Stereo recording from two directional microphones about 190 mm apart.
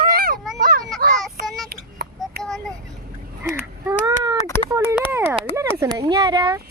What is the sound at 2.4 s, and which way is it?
Vehicle, centre (ahead or behind).